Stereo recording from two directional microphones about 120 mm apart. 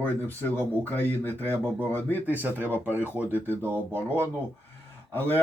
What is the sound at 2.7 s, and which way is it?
Speech, 20° left (ahead or behind).